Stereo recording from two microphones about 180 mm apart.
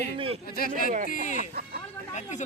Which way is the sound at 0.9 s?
45° right (ahead or behind).